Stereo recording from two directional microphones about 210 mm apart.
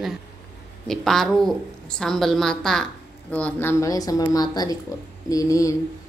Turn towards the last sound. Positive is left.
turn(degrees=15)  # may be behind; listen again after turning